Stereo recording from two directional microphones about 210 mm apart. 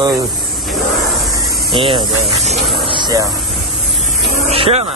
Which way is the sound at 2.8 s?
20° right (ahead or behind).